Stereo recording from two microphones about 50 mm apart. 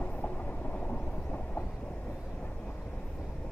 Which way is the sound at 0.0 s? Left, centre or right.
Left.